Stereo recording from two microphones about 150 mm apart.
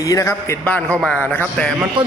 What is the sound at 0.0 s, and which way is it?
A man's voice, 20° left (ahead or behind).